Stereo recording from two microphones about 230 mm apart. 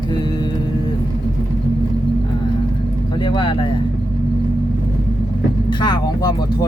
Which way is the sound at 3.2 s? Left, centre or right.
Left.